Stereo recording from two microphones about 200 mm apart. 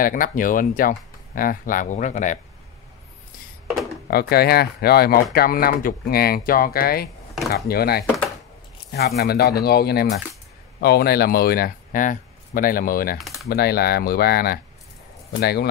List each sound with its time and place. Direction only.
0.0 s speech: 45° left (ahead or behind)
4.1 s speech: 50° left (ahead or behind)